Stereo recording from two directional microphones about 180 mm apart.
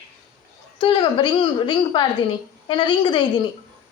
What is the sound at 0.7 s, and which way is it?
A woman's voice, 30° left (ahead or behind).